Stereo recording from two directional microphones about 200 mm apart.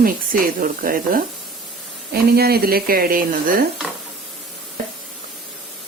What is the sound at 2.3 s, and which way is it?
Speech, 50° right (ahead or behind).